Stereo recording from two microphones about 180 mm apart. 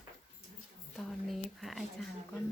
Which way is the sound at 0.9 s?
Centre (ahead or behind).